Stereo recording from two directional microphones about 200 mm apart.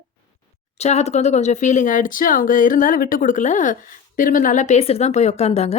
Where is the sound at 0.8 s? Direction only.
35° left (ahead or behind).